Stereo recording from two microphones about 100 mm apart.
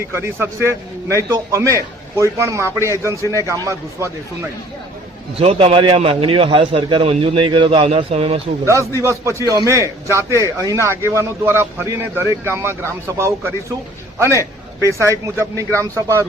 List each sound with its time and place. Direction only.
0.0 s a man's voice: 25° right (ahead or behind)
5.4 s a man's voice: 85° right
8.6 s a man's voice: 30° right (ahead or behind)